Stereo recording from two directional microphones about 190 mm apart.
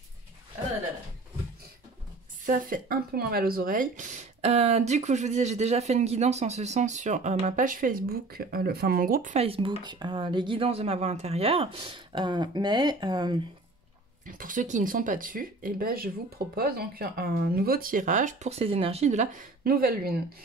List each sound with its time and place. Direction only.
2.4 s speech: 45° right (ahead or behind); by 13.4 s 20° right (ahead or behind)
14.2 s speech: 45° right (ahead or behind)